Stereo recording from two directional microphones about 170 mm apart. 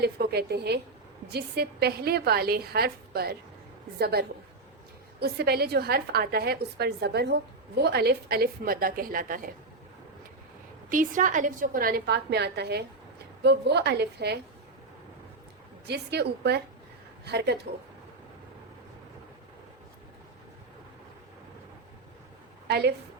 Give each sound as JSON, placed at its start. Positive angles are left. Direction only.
{"t": 0.0, "sound": "a woman's voice", "side_deg": -70}
{"t": 10.8, "sound": "a woman's voice", "side_deg": -50}
{"t": 15.9, "sound": "a woman's voice", "side_deg": -75}
{"t": 22.6, "sound": "a woman's voice", "side_deg": -75}